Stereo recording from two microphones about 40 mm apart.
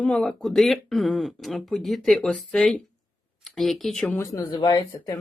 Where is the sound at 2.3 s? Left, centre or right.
Centre.